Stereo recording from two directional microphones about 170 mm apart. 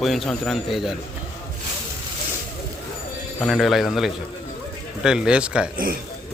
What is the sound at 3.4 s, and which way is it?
A man's voice, centre (ahead or behind).